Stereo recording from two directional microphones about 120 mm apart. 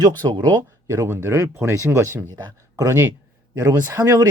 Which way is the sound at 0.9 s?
20° right (ahead or behind).